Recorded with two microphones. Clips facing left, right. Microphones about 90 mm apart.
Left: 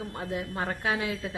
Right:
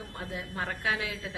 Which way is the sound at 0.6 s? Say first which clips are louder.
Left 1 dB; 35° left (ahead or behind).